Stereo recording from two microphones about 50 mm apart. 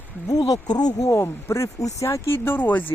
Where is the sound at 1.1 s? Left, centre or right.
Left.